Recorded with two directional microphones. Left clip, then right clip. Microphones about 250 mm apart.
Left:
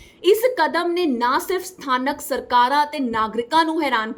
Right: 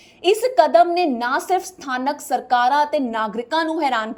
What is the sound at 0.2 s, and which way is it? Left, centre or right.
Speech, centre.